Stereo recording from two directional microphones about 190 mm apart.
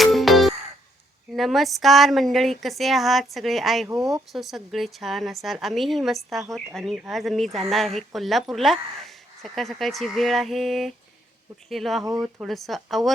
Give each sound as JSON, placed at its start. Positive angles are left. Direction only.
{"t": 0.0, "sound": "music", "side_deg": 0}
{"t": 1.4, "sound": "speech", "side_deg": 0}
{"t": 3.8, "sound": "speech", "side_deg": -20}
{"t": 4.3, "sound": "speech", "side_deg": 0}